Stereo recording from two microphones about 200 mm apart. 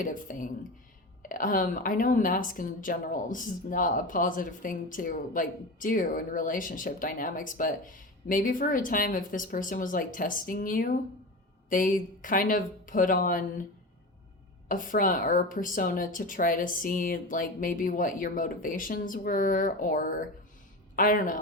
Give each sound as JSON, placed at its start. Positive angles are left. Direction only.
{"t": 0.0, "sound": "a woman's voice", "side_deg": 45}
{"t": 14.7, "sound": "a woman's voice", "side_deg": 40}